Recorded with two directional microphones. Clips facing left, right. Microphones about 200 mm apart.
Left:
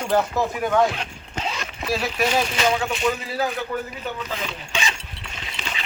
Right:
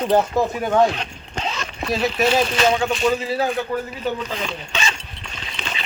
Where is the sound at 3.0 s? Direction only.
30° right (ahead or behind).